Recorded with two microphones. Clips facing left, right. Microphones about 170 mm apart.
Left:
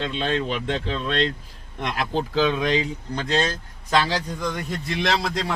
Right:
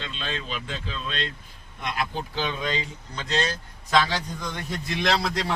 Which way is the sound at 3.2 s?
50° left (ahead or behind).